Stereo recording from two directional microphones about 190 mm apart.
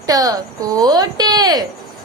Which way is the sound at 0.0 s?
20° right (ahead or behind).